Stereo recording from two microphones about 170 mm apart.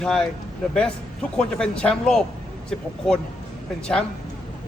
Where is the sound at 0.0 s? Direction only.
5° left (ahead or behind).